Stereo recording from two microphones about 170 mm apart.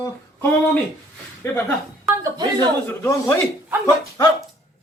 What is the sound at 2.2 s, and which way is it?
Speech, 25° right (ahead or behind).